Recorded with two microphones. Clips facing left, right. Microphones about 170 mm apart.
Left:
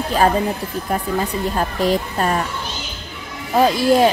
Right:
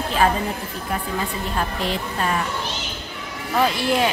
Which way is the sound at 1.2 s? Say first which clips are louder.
Left 4 dB; 40° left (ahead or behind).